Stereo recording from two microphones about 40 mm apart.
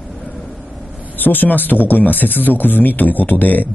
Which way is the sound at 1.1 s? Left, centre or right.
Left.